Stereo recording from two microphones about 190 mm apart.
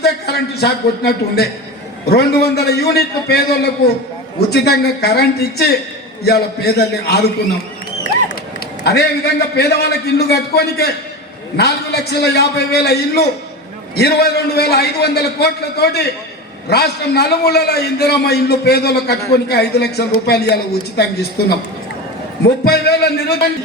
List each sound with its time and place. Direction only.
0.0 s a man's voice: 55° left (ahead or behind)
8.8 s a man's voice: 60° left (ahead or behind)
22.4 s a man's voice: 55° left (ahead or behind)